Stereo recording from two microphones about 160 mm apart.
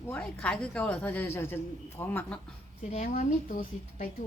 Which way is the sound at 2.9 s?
50° left (ahead or behind).